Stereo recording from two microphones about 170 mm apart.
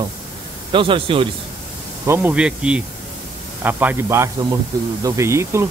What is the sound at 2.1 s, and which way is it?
Speech, 10° right (ahead or behind).